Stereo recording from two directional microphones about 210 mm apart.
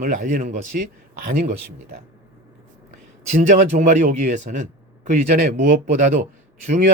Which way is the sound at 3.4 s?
35° right (ahead or behind).